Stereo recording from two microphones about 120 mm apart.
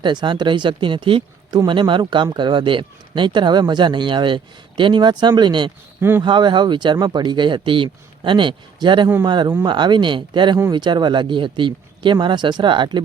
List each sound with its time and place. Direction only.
0.0 s speech: 40° right (ahead or behind)
6.0 s speech: 20° right (ahead or behind)
6.2 s speech: 40° right (ahead or behind)